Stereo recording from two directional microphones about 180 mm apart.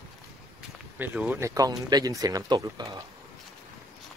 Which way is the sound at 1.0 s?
10° right (ahead or behind).